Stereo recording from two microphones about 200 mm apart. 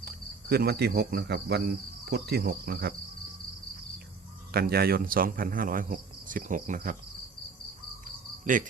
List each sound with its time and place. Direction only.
0.0 s cricket: 50° right (ahead or behind)
4.5 s speech: 50° right (ahead or behind)